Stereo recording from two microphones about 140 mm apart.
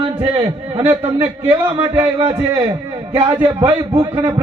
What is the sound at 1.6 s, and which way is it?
Speech, 20° right (ahead or behind).